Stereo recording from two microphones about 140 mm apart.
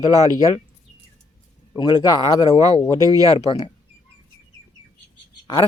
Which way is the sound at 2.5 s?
50° left (ahead or behind).